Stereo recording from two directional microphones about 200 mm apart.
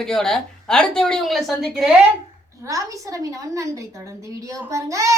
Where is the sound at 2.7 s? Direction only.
15° right (ahead or behind).